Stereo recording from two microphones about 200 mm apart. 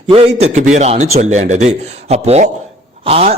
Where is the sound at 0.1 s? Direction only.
30° right (ahead or behind).